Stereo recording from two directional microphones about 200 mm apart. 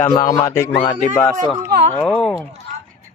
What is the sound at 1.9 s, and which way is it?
Speech, 5° left (ahead or behind).